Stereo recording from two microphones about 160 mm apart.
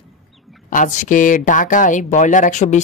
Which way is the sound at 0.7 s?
55° left (ahead or behind).